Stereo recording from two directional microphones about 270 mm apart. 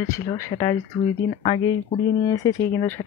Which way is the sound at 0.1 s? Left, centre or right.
Centre.